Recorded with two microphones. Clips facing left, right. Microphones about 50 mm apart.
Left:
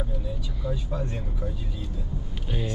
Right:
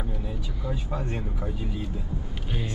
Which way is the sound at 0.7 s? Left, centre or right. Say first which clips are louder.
Right 1 dB; right.